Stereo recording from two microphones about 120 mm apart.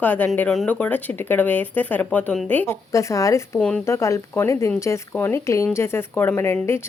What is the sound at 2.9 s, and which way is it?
A woman's voice, 25° left (ahead or behind).